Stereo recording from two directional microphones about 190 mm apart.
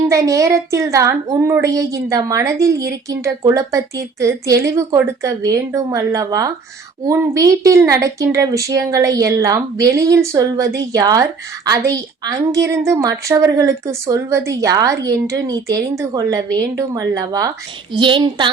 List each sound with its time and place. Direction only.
0.1 s a woman's voice: 15° right (ahead or behind)